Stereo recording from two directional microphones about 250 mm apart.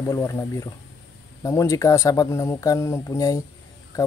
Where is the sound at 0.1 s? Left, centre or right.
Centre.